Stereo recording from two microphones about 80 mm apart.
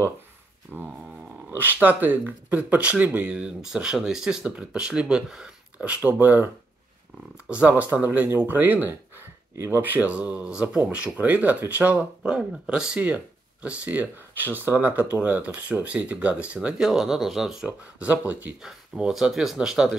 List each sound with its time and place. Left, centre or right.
0.7 s speech: centre
7.4 s speech: centre
17.6 s speech: centre
18.6 s speech: centre